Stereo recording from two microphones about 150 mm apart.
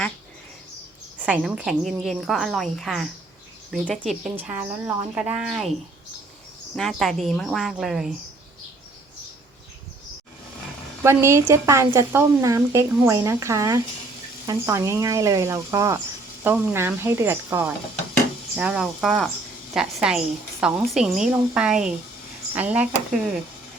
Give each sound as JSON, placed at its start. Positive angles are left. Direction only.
{"t": 1.2, "sound": "a woman's voice", "side_deg": -5}
{"t": 4.4, "sound": "a woman's voice", "side_deg": -10}
{"t": 6.7, "sound": "a woman's voice", "side_deg": 0}
{"t": 11.0, "sound": "a woman's voice", "side_deg": -20}